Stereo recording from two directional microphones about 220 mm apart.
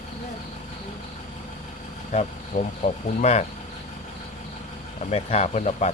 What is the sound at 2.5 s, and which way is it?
Speech, 35° left (ahead or behind).